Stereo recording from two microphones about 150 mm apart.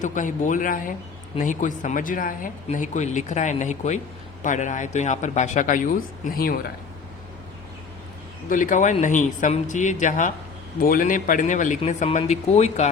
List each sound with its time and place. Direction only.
0.0 s speech: 60° left (ahead or behind)
8.4 s speech: 60° left (ahead or behind)
10.8 s speech: 70° left (ahead or behind); by 12.9 s 50° left (ahead or behind)